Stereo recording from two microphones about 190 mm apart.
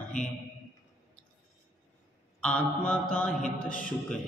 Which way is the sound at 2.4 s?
5° left (ahead or behind).